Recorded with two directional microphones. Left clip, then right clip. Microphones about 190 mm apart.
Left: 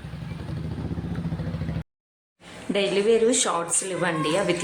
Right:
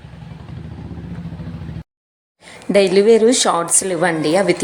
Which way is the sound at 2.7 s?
35° right (ahead or behind).